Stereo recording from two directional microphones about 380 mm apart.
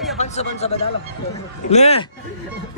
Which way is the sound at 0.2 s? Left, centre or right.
Centre.